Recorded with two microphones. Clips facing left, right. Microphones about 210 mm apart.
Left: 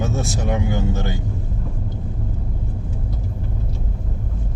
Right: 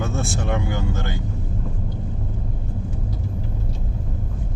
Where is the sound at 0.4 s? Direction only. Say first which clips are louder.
Left 5 dB; 15° left (ahead or behind).